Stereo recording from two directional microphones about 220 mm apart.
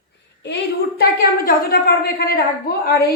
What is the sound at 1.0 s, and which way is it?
A woman's voice, 45° left (ahead or behind).